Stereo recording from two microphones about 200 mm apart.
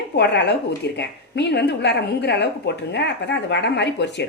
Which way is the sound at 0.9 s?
60° left (ahead or behind).